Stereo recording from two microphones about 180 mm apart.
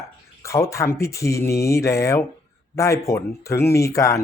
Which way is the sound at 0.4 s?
15° left (ahead or behind).